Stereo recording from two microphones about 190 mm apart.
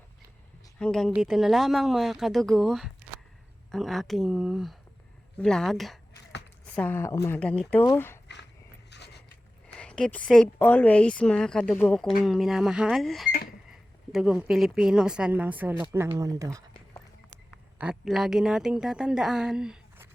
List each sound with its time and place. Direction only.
0.8 s a woman's voice: 5° left (ahead or behind)
8.9 s a sound: 60° left (ahead or behind)
9.7 s a woman's voice: 5° left (ahead or behind); by 16.6 s 15° right (ahead or behind)
17.7 s a woman's voice: 5° right (ahead or behind)